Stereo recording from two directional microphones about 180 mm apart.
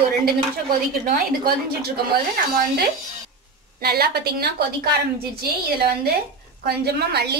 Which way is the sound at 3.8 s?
60° right (ahead or behind).